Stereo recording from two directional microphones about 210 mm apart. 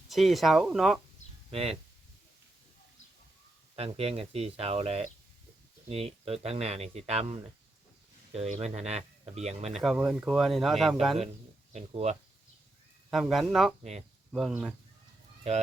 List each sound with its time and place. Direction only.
0.1 s speech: centre (ahead or behind)
1.5 s speech: 30° right (ahead or behind)
3.8 s speech: 30° right (ahead or behind)
9.8 s speech: centre (ahead or behind)
11.7 s speech: 30° right (ahead or behind)
13.1 s speech: centre (ahead or behind)